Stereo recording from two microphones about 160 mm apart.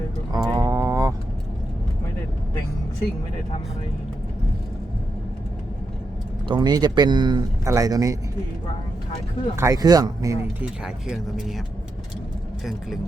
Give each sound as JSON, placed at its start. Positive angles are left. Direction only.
{"t": 0.3, "sound": "a sound", "side_deg": -25}
{"t": 6.5, "sound": "speech", "side_deg": -25}
{"t": 9.6, "sound": "speech", "side_deg": -20}
{"t": 10.6, "sound": "speech", "side_deg": -5}